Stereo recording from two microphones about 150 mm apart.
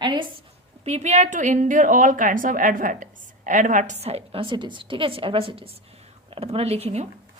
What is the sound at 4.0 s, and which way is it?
A woman's voice, 45° right (ahead or behind).